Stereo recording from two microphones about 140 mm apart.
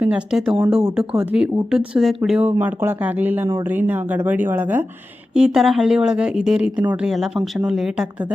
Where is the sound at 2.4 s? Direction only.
15° right (ahead or behind).